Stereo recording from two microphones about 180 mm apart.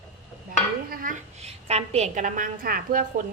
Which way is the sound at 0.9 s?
45° right (ahead or behind).